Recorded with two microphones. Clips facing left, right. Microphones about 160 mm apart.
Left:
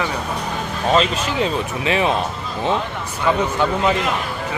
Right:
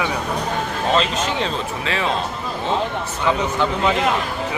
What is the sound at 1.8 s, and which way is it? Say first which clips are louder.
Speech: left 5 dB; 20° left (ahead or behind).